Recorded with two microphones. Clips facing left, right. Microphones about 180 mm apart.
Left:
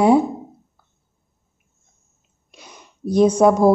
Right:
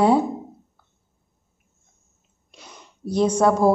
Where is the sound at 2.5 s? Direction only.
15° left (ahead or behind).